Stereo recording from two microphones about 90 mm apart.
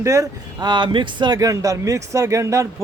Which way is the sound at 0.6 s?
55° right (ahead or behind).